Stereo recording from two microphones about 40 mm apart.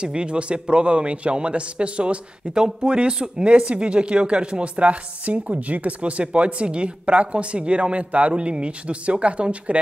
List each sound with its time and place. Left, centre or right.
0.0 s speech: right